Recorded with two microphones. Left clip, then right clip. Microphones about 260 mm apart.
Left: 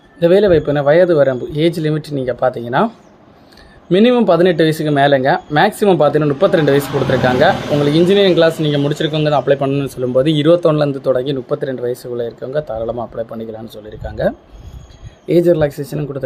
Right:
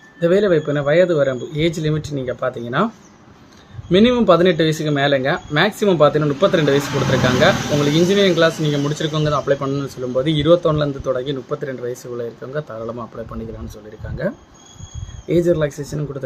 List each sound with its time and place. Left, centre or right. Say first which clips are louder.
0.2 s speech: left 5 dB; centre
3.9 s speech: left 2 dB; centre
15.4 s speech: left 5 dB; centre